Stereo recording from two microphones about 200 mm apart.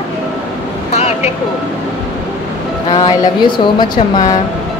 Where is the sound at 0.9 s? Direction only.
30° left (ahead or behind).